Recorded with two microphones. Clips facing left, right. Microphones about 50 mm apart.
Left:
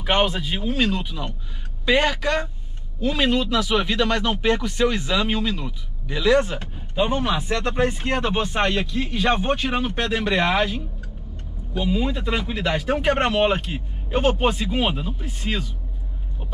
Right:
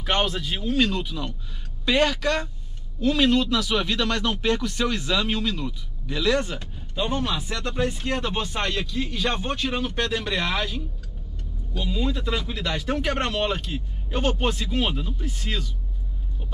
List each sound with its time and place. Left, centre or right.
0.0 s speech: centre